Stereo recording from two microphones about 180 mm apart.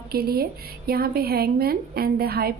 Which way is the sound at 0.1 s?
60° right (ahead or behind).